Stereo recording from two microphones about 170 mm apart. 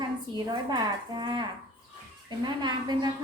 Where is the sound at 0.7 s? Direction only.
25° right (ahead or behind).